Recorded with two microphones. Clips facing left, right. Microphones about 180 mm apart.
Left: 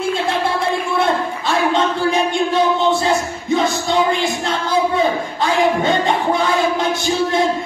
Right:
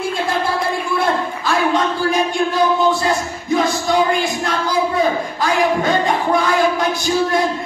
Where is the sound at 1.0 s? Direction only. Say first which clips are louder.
Even; 25° left (ahead or behind).